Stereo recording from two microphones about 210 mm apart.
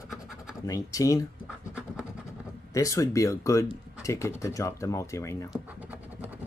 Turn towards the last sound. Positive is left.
turn(degrees=15)  # may be behind; listen again after turning